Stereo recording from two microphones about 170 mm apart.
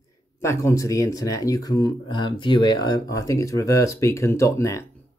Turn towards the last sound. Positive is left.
turn(degrees=15)  # may be behind; listen again after turning